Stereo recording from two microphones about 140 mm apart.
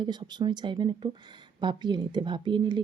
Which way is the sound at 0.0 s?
35° right (ahead or behind).